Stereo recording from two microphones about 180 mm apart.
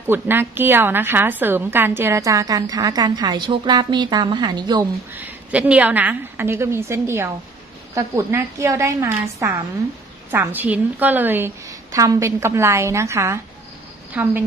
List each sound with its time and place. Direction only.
0.0 s a woman's voice: 10° right (ahead or behind)
5.1 s a woman's voice: 10° right (ahead or behind)